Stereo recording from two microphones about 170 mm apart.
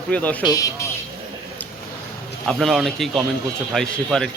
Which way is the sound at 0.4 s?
20° left (ahead or behind).